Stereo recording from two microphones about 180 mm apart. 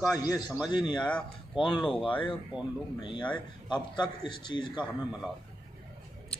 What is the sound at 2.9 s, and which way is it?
A man's voice, 25° left (ahead or behind).